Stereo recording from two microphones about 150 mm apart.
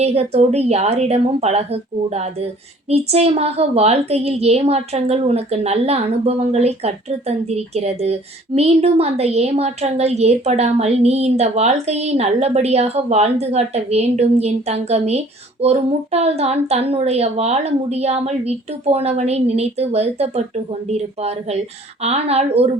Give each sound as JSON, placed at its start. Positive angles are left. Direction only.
{"t": 0.0, "sound": "a woman's voice", "side_deg": -45}